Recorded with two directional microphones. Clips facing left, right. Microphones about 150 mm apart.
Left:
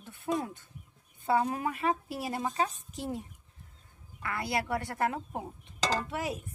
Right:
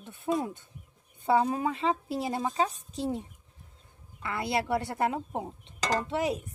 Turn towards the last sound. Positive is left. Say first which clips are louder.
# right 4 dB
turn(degrees=-25)  # may be behind; listen again after turning